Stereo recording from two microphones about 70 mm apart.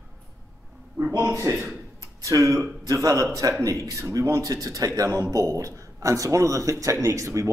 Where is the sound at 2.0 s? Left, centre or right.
Right.